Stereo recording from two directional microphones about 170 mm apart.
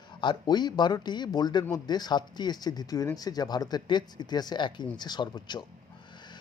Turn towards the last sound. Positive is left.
turn(degrees=25)  # may be behind; listen again after turning